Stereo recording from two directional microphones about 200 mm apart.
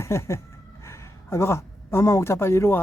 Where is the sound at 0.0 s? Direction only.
15° left (ahead or behind).